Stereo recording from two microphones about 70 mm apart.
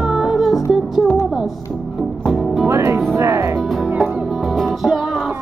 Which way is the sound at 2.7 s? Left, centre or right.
Right.